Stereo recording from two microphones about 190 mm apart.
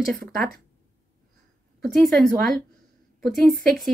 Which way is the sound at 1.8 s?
Centre (ahead or behind).